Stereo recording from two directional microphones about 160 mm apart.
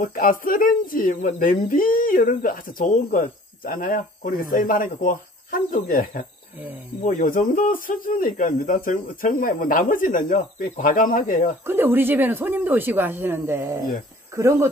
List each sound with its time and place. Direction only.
0.0 s speech: 60° left (ahead or behind)
11.6 s speech: 15° right (ahead or behind)